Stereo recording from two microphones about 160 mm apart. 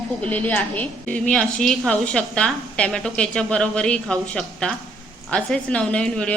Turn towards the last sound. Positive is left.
turn(degrees=5)  # may be behind; listen again after turning